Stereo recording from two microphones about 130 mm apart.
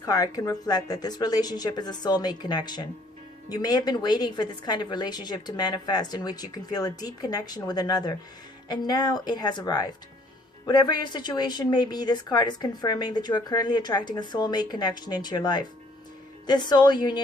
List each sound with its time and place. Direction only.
0.0 s speech: 30° left (ahead or behind)